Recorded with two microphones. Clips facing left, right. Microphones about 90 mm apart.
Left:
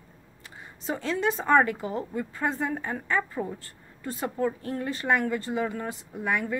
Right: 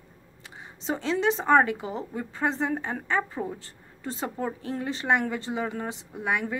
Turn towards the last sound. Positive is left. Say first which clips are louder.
# even
turn(degrees=-15)  # may be behind; listen again after turning